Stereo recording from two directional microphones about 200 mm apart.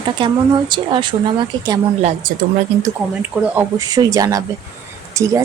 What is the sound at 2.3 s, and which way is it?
Speech, 40° right (ahead or behind).